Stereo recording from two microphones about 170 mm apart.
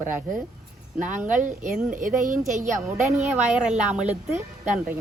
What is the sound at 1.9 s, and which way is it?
A woman's voice, 50° right (ahead or behind).